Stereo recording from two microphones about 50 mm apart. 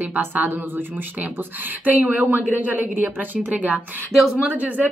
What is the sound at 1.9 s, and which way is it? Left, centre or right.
A woman's voice, right.